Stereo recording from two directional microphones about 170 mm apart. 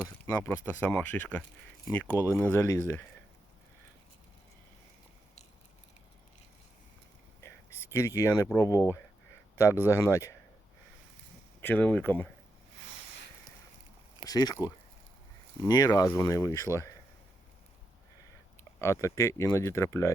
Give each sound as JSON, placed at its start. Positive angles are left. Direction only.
{"t": 0.4, "sound": "speech", "side_deg": 10}
{"t": 7.4, "sound": "a sound", "side_deg": 15}
{"t": 8.5, "sound": "speech", "side_deg": 20}
{"t": 11.6, "sound": "speech", "side_deg": 10}
{"t": 14.3, "sound": "speech", "side_deg": 20}
{"t": 15.6, "sound": "speech", "side_deg": 20}
{"t": 18.8, "sound": "speech", "side_deg": 15}